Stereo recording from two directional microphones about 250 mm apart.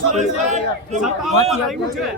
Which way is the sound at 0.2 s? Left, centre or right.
Right.